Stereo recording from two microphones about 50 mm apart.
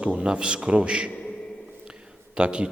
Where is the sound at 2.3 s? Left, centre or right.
Centre.